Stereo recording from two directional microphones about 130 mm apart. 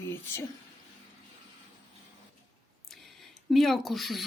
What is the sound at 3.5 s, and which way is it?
Speech, centre (ahead or behind).